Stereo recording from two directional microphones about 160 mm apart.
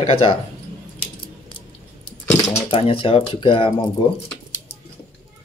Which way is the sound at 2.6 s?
35° left (ahead or behind).